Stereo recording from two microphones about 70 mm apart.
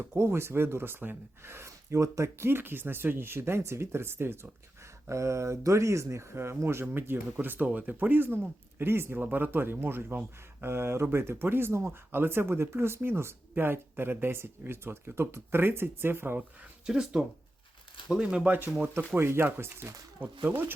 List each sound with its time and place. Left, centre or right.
0.1 s speech: right
16.4 s speech: centre; by 20.7 s right